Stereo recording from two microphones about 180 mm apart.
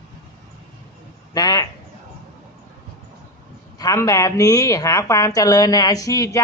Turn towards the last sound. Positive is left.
turn(degrees=20)  # may be behind; listen again after turning